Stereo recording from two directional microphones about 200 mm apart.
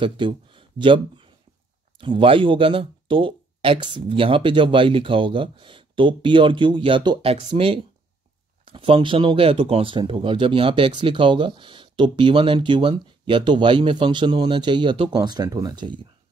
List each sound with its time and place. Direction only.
0.0 s speech: 25° right (ahead or behind)